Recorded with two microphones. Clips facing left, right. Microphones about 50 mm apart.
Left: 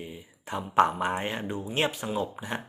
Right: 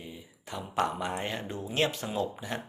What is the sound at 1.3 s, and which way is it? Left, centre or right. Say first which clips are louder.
Speech: left 3 dB; centre.